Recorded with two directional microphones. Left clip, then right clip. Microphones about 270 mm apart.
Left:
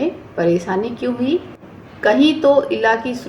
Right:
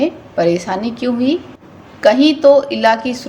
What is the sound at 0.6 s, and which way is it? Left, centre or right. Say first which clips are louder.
Speech: even; right.